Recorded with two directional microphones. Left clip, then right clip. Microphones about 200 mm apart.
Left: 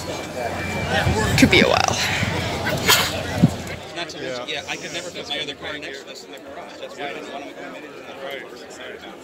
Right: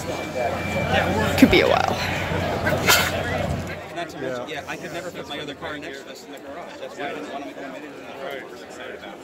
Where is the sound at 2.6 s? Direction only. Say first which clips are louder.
Left 1 dB; 45° right (ahead or behind).